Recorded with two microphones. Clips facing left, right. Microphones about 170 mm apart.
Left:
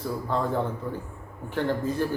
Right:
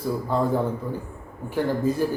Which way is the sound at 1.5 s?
10° right (ahead or behind).